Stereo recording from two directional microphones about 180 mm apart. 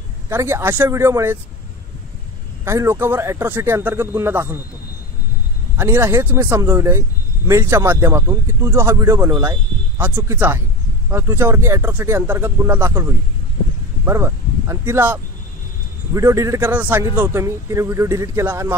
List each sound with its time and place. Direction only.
0.3 s speech: 15° right (ahead or behind)
2.6 s speech: 15° right (ahead or behind)
5.8 s speech: 15° right (ahead or behind)